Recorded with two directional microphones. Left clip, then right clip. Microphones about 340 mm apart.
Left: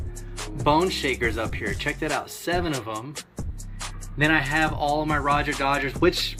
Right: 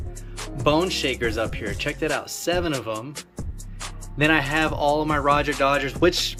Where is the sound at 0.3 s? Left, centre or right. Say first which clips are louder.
Even; centre.